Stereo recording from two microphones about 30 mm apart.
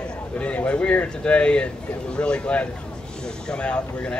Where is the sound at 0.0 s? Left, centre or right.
Left.